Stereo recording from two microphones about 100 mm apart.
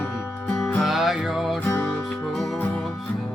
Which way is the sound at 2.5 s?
20° left (ahead or behind).